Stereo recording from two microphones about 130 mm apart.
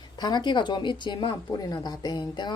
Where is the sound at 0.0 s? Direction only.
35° left (ahead or behind).